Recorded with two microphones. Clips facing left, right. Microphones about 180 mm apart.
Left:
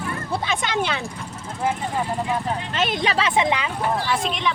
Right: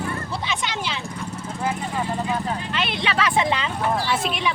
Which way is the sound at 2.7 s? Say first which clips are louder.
Left 5 dB; 45° left (ahead or behind).